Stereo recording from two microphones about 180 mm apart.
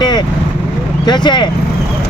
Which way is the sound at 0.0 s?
25° left (ahead or behind).